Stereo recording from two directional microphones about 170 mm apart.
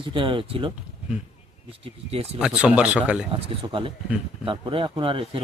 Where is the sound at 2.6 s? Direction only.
5° right (ahead or behind).